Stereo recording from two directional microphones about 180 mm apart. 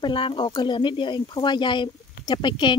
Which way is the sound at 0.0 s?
25° left (ahead or behind).